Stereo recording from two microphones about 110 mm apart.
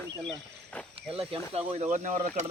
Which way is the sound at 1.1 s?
60° right (ahead or behind).